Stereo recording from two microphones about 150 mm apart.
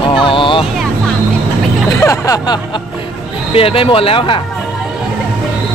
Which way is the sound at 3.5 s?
40° left (ahead or behind).